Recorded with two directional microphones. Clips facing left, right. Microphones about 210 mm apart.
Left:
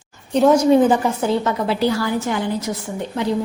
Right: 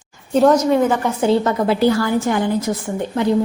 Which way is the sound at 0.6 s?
30° left (ahead or behind).